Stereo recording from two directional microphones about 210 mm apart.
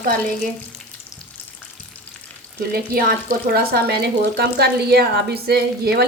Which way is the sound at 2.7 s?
45° right (ahead or behind).